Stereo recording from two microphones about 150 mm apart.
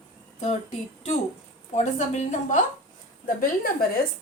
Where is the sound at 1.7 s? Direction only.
50° left (ahead or behind).